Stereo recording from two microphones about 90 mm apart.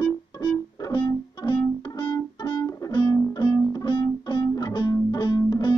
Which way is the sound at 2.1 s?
50° left (ahead or behind).